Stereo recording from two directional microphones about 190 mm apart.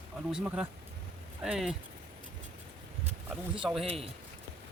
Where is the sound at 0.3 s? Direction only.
5° right (ahead or behind).